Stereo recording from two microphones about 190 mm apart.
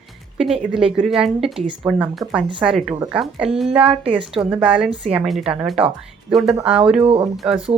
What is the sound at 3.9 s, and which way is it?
Speech, 30° right (ahead or behind).